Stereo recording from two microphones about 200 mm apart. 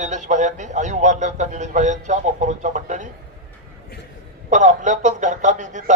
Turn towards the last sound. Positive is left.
turn(degrees=-40)  # may be behind; listen again after turning